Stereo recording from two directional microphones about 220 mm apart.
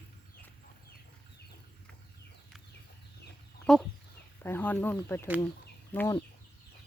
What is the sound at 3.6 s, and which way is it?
Chicken, 5° left (ahead or behind).